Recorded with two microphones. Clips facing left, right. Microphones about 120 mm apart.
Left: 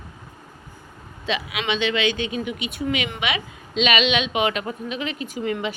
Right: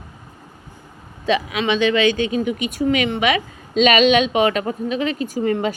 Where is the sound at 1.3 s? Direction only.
40° right (ahead or behind).